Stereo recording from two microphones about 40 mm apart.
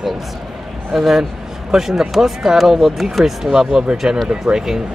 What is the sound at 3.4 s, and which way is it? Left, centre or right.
Speech, centre.